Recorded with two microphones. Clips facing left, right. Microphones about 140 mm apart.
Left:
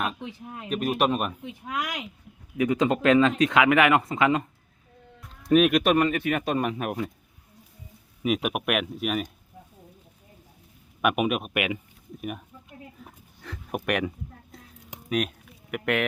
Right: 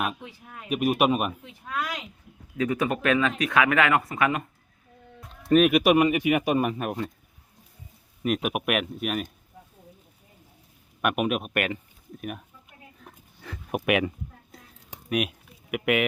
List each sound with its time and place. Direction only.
0.2 s speech: 20° left (ahead or behind)
0.7 s speech: 10° right (ahead or behind)
1.5 s speech: 20° left (ahead or behind)
5.5 s speech: centre (ahead or behind)
8.2 s speech: centre (ahead or behind)
11.0 s speech: centre (ahead or behind)
13.0 s a sound: centre (ahead or behind)
15.1 s speech: 10° right (ahead or behind)